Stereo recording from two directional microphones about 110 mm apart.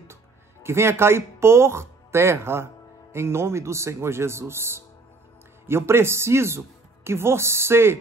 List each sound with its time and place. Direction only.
0.1 s speech: 25° right (ahead or behind)